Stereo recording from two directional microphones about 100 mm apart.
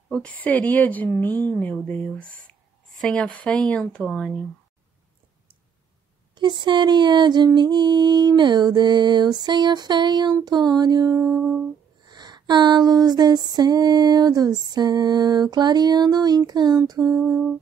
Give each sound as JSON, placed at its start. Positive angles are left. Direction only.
{"t": 0.1, "sound": "speech", "side_deg": 15}
{"t": 3.0, "sound": "speech", "side_deg": 5}
{"t": 6.3, "sound": "a sound", "side_deg": -50}
{"t": 11.2, "sound": "humming", "side_deg": -5}
{"t": 12.1, "sound": "a sound", "side_deg": -45}
{"t": 17.2, "sound": "humming", "side_deg": -5}